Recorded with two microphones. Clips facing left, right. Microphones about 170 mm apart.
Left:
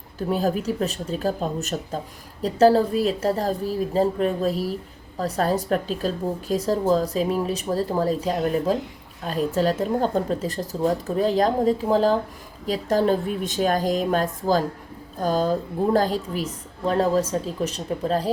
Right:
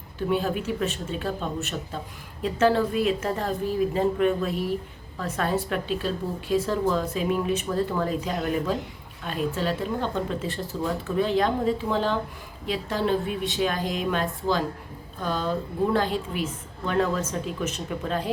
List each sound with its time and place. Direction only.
0.2 s a woman's voice: 40° left (ahead or behind)